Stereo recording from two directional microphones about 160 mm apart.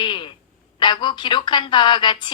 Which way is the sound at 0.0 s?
30° left (ahead or behind).